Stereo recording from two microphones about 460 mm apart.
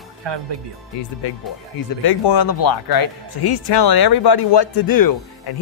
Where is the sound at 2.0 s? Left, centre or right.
Left.